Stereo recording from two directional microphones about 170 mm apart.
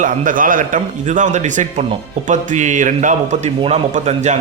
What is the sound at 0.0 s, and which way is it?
A man's voice, 50° right (ahead or behind).